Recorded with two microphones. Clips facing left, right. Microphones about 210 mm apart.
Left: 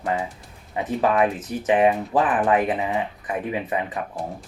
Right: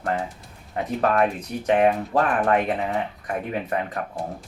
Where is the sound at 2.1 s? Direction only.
15° left (ahead or behind).